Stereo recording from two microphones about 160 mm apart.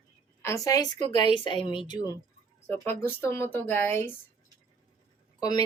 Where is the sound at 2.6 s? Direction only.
15° left (ahead or behind).